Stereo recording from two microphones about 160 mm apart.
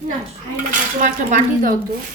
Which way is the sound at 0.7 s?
55° right (ahead or behind).